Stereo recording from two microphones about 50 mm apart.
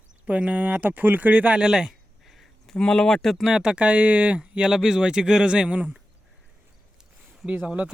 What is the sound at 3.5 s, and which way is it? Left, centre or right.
Speech, centre.